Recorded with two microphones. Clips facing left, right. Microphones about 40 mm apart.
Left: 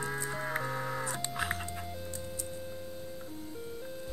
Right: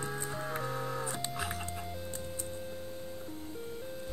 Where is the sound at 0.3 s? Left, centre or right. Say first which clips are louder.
Left 2 dB; left.